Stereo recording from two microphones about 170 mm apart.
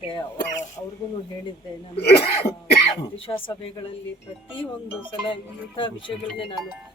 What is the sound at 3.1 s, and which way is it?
Speech, 30° left (ahead or behind).